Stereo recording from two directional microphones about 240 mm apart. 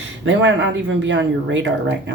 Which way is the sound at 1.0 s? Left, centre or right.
Right.